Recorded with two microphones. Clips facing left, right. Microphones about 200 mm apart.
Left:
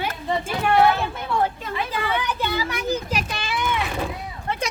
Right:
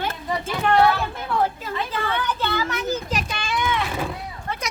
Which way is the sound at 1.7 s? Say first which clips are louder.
Left 1 dB; 10° left (ahead or behind).